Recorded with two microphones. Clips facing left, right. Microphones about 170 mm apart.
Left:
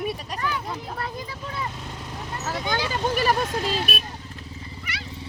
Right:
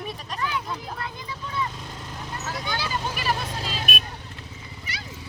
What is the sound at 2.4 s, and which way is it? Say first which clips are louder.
Speech: left 4 dB; 40° left (ahead or behind).